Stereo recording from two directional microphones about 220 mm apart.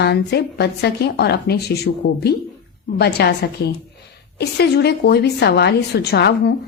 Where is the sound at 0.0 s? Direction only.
50° left (ahead or behind).